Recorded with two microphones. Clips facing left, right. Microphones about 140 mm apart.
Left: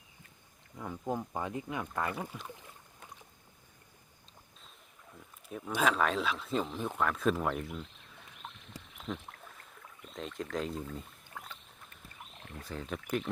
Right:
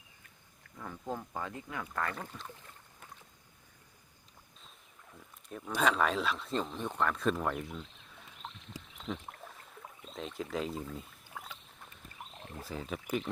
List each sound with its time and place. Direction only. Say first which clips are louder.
0.8 s speech: left 4 dB; 15° left (ahead or behind)
5.5 s speech: even; 5° left (ahead or behind)
9.0 s rowboat: even; centre (ahead or behind)
10.2 s speech: even; centre (ahead or behind)
12.4 s a sound: right 1 dB; 25° right (ahead or behind)
12.6 s speech: even; 5° right (ahead or behind)